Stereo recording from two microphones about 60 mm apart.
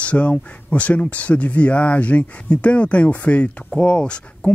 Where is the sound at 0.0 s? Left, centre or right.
Left.